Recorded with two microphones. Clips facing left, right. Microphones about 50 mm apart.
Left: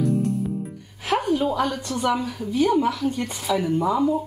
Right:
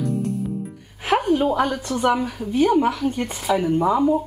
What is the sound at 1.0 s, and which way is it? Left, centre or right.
A woman's voice, right.